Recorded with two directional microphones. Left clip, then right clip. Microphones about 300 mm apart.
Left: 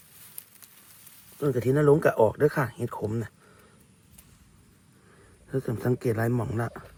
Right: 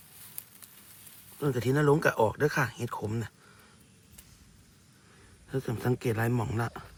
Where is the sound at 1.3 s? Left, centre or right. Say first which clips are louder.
Left 4 dB; centre.